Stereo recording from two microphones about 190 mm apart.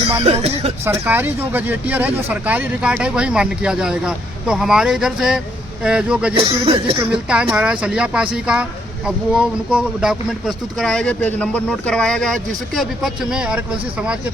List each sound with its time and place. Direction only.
0.2 s speech: 30° right (ahead or behind)
0.9 s speech: 10° right (ahead or behind)
6.3 s speech: 30° right (ahead or behind)
7.0 s speech: 5° right (ahead or behind)